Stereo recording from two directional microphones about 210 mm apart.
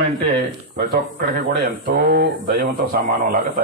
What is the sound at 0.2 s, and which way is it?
Speech, 50° right (ahead or behind).